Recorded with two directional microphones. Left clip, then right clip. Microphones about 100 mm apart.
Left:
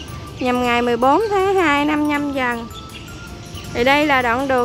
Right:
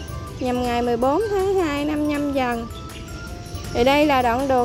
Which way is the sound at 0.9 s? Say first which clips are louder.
Left 5 dB; 35° left (ahead or behind).